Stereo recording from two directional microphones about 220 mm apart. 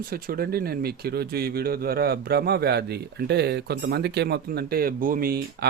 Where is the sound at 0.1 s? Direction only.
45° right (ahead or behind).